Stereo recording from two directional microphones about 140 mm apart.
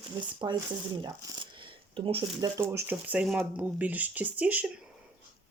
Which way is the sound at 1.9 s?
40° right (ahead or behind).